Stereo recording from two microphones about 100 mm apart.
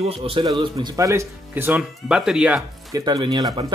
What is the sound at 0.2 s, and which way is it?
Speech, 60° right (ahead or behind).